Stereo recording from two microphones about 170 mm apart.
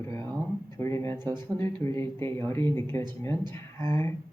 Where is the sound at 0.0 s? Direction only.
15° left (ahead or behind).